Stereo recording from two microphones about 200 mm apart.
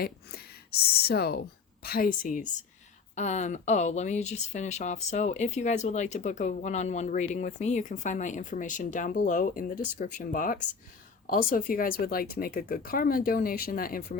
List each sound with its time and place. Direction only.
0.0 s speech: 50° left (ahead or behind)